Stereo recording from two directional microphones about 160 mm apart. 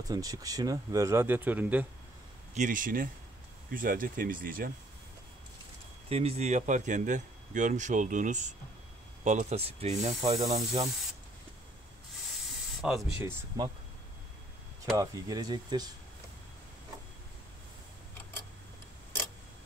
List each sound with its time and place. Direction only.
0.1 s speech: 25° right (ahead or behind)
2.5 s speech: 55° right (ahead or behind)
6.0 s speech: 40° right (ahead or behind)
10.4 s speech: 25° right (ahead or behind)
12.8 s speech: 5° right (ahead or behind)
13.5 s speech: 20° right (ahead or behind)
15.0 s speech: 25° right (ahead or behind)